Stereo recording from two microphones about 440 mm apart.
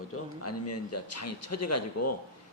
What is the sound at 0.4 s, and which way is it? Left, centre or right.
A man's voice, left.